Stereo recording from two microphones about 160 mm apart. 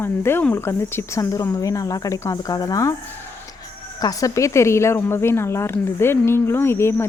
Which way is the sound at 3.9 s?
25° left (ahead or behind).